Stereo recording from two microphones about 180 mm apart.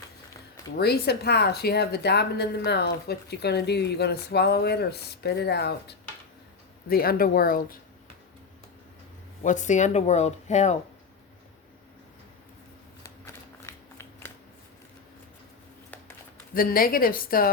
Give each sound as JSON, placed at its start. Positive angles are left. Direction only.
{"t": 0.8, "sound": "speech", "side_deg": 65}
{"t": 9.4, "sound": "speech", "side_deg": 45}
{"t": 13.0, "sound": "shuffling cards", "side_deg": 15}
{"t": 16.6, "sound": "a woman's voice", "side_deg": 55}